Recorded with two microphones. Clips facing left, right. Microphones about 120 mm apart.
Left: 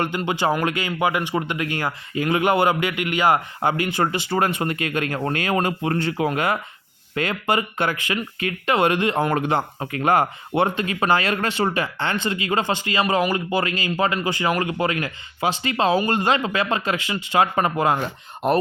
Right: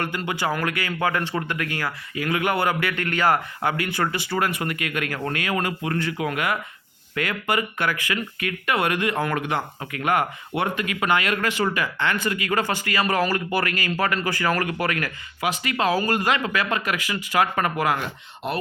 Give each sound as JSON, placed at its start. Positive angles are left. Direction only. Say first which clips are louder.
{"t": 0.0, "sound": "speech", "louder": "left 4 dB", "side_deg": 20}